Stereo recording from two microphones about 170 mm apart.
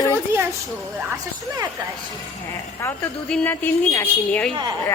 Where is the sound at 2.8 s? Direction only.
10° left (ahead or behind).